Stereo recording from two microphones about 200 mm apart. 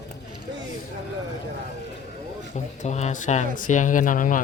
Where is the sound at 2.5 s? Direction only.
35° left (ahead or behind).